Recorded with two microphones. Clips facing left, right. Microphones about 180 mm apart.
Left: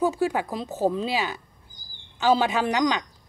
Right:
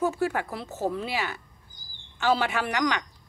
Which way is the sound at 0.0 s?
15° left (ahead or behind).